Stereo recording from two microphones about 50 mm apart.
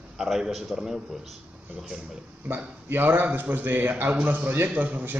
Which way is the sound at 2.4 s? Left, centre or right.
Right.